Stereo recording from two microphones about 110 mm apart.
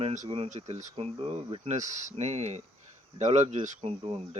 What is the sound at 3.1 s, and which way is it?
Speech, 90° right.